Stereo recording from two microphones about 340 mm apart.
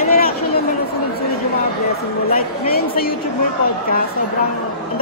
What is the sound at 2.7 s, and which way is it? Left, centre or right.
Speech, left.